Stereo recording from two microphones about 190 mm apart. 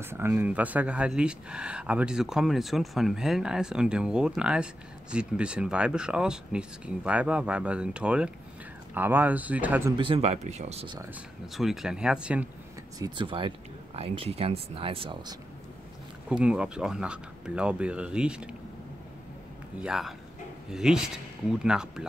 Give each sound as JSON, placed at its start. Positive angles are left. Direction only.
{"t": 0.0, "sound": "speech", "side_deg": -10}
{"t": 9.9, "sound": "speech", "side_deg": -30}
{"t": 11.5, "sound": "speech", "side_deg": 0}
{"t": 13.0, "sound": "speech", "side_deg": -25}
{"t": 16.3, "sound": "speech", "side_deg": -5}
{"t": 19.8, "sound": "speech", "side_deg": 0}